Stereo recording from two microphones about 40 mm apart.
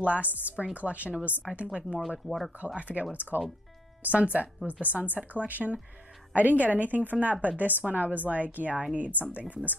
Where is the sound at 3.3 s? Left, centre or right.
Right.